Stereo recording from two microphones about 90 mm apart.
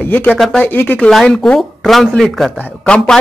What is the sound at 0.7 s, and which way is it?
Speech, 20° left (ahead or behind).